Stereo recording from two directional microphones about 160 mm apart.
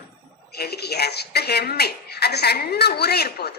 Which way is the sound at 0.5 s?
90° left.